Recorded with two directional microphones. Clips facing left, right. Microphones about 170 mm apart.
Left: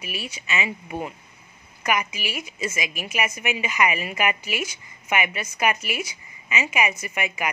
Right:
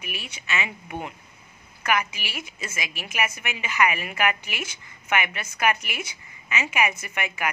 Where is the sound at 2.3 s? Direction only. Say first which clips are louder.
Left 8 dB; 10° left (ahead or behind).